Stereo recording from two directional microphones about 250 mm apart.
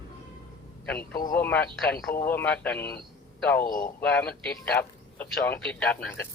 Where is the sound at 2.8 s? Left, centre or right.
Left.